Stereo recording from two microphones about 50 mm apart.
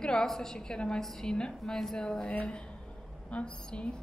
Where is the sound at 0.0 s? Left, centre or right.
Centre.